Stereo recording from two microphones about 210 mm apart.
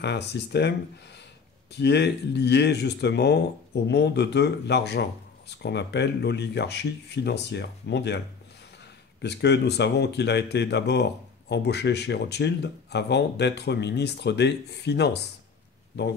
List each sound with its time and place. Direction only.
0.0 s speech: 55° left (ahead or behind)
9.2 s speech: 55° left (ahead or behind)